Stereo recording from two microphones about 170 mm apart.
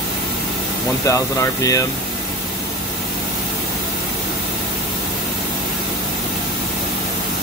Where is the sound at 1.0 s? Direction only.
20° left (ahead or behind).